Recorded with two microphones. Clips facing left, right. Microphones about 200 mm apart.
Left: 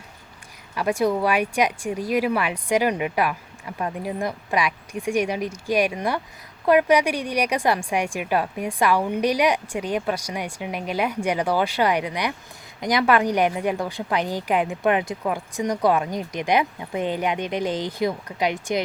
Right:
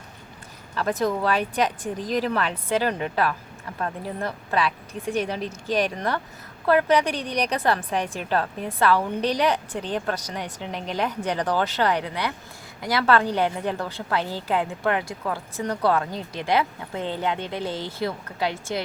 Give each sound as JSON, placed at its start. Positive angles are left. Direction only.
{"t": 0.8, "sound": "a woman's voice", "side_deg": 10}